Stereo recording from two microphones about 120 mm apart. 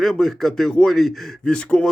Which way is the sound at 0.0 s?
5° left (ahead or behind).